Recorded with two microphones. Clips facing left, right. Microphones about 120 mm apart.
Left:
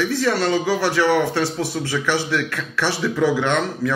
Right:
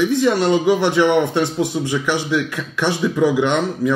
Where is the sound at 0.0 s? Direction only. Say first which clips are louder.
Right 4 dB; 15° right (ahead or behind).